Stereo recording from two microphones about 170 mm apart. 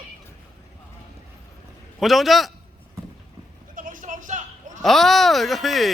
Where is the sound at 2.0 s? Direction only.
Centre (ahead or behind).